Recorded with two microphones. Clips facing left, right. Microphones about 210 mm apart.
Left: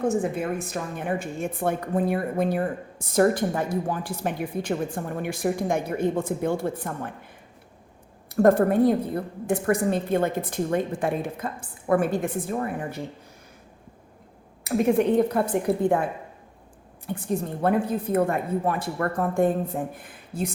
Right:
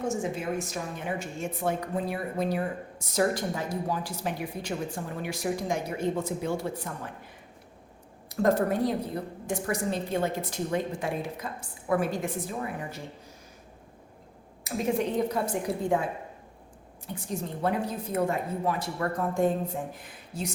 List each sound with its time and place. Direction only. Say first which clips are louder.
0.0 s a woman's voice: left 5 dB; 55° left (ahead or behind)
8.4 s a woman's voice: left 6 dB; 55° left (ahead or behind)
14.6 s a woman's voice: left 7 dB; 60° left (ahead or behind)
17.2 s a woman's voice: left 5 dB; 55° left (ahead or behind)